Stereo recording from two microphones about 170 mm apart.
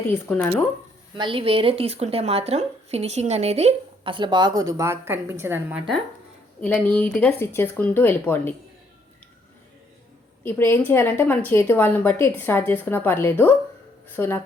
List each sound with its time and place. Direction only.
0.1 s a woman's voice: 10° left (ahead or behind)
1.1 s speech: 30° right (ahead or behind); by 5.8 s 10° right (ahead or behind)
6.6 s a woman's voice: 10° left (ahead or behind)
10.4 s a woman's voice: 15° left (ahead or behind)